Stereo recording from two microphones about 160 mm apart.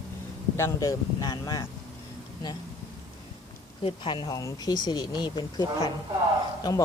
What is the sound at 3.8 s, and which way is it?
Speech, 30° left (ahead or behind).